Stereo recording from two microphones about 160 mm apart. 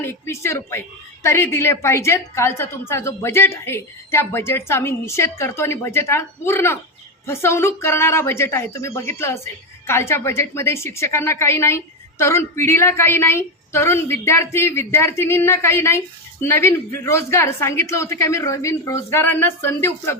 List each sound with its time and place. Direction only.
0.0 s speech: 15° left (ahead or behind)